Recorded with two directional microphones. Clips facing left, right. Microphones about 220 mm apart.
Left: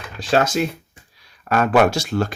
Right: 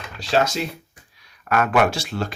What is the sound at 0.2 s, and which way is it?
Speech, 50° left (ahead or behind).